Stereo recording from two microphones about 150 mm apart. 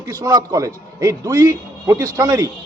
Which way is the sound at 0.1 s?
25° right (ahead or behind).